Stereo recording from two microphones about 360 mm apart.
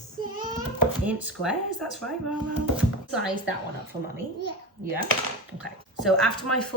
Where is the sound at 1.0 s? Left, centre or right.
Centre.